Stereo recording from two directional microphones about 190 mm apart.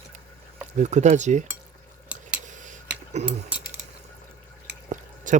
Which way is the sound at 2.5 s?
40° right (ahead or behind).